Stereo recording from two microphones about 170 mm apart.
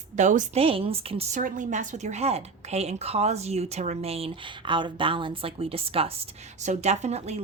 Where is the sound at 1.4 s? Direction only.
50° right (ahead or behind).